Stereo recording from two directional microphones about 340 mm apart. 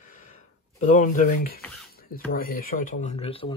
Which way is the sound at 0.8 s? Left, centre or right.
Left.